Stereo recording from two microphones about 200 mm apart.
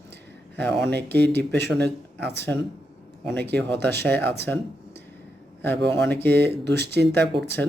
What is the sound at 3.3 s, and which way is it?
Speech, 5° left (ahead or behind).